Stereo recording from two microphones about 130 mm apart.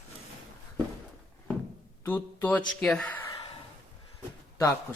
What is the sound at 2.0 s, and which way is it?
Speech, 15° left (ahead or behind).